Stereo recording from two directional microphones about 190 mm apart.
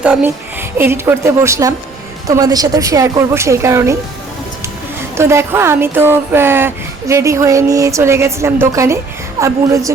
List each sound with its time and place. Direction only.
0.0 s speech: 10° right (ahead or behind)
5.1 s speech: 15° right (ahead or behind)